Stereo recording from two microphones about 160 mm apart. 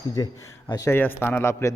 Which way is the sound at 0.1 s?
20° left (ahead or behind).